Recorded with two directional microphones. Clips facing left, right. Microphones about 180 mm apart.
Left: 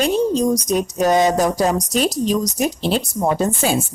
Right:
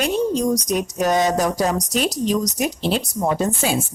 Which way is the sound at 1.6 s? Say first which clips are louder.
Left 3 dB; 35° left (ahead or behind).